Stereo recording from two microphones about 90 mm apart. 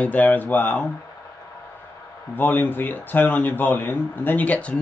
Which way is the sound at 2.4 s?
20° left (ahead or behind).